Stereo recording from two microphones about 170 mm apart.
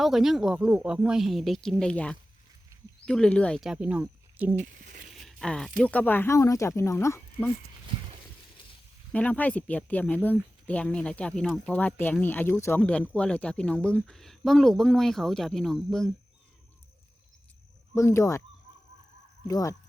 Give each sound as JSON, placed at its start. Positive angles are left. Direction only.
{"t": 0.0, "sound": "speech", "side_deg": 0}
{"t": 4.6, "sound": "a sound", "side_deg": -55}
{"t": 5.1, "sound": "a sound", "side_deg": 0}
{"t": 5.8, "sound": "speech", "side_deg": 10}
{"t": 9.1, "sound": "speech", "side_deg": 10}
{"t": 17.9, "sound": "speech", "side_deg": 15}
{"t": 19.5, "sound": "speech", "side_deg": 20}